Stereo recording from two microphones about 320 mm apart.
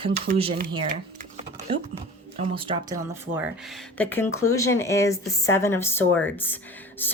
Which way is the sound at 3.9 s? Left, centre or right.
Centre.